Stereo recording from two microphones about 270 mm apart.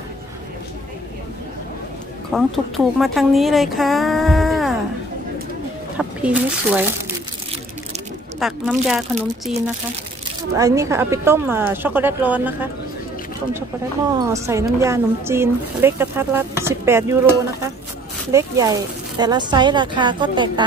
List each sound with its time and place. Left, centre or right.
2.3 s speech: centre
5.9 s speech: centre
8.4 s speech: centre
10.5 s speech: centre
14.1 s speech: centre
18.3 s speech: centre